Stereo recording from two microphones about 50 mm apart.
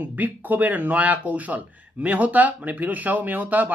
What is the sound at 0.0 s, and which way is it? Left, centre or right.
Speech, right.